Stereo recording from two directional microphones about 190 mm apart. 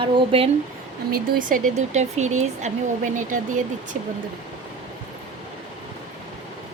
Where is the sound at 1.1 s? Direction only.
45° right (ahead or behind).